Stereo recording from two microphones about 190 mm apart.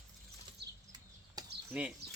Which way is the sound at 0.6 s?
60° right (ahead or behind).